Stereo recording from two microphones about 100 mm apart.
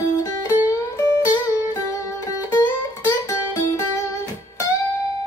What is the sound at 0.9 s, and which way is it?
Music, 30° left (ahead or behind).